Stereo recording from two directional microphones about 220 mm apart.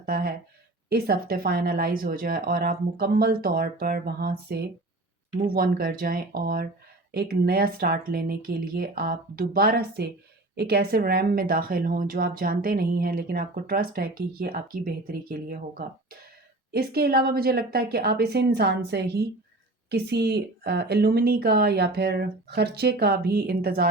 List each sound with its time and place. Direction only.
0.0 s a woman's voice: 40° right (ahead or behind)
16.7 s a woman's voice: 45° right (ahead or behind)